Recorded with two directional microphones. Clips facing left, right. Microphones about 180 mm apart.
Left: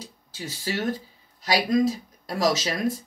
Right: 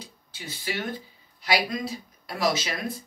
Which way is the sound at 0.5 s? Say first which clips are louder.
Left 4 dB; 40° left (ahead or behind).